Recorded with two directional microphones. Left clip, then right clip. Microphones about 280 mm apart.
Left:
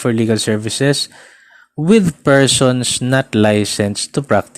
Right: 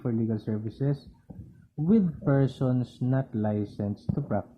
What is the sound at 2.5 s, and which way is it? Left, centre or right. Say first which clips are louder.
Speech: left 17 dB; left.